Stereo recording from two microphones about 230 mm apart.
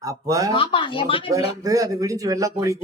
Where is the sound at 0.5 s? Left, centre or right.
Left.